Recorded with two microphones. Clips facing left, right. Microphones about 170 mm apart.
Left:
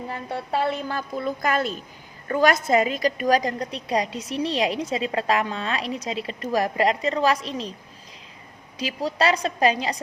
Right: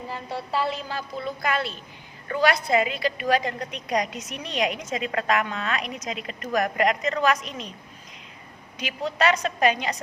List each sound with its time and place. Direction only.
0.1 s a woman's voice: 55° left (ahead or behind); by 7.7 s 30° left (ahead or behind)
8.8 s a woman's voice: 35° left (ahead or behind)